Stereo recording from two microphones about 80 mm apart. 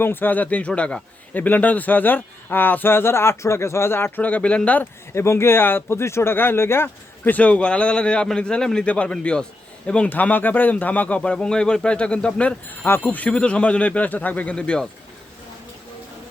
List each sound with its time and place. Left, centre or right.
0.0 s a man's voice: left; by 1.0 s centre
1.3 s a man's voice: left
5.1 s speech: left; by 12.5 s centre
12.8 s speech: left